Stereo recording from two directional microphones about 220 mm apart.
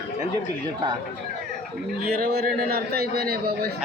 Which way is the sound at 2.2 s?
45° right (ahead or behind).